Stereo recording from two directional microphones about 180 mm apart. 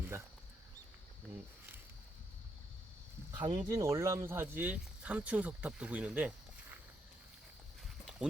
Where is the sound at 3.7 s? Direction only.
15° right (ahead or behind).